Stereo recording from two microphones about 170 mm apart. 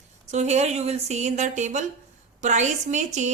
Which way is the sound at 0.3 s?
40° right (ahead or behind).